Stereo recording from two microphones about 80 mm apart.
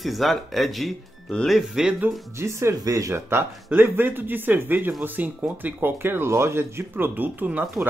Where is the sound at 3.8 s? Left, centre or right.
Right.